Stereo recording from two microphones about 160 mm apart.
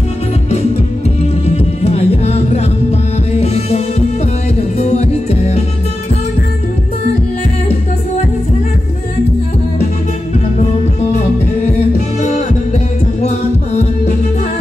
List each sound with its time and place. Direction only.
1.4 s music: 40° left (ahead or behind)
10.6 s music: 45° left (ahead or behind)